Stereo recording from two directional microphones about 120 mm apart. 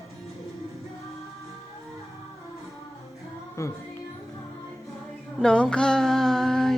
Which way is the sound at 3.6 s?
25° left (ahead or behind).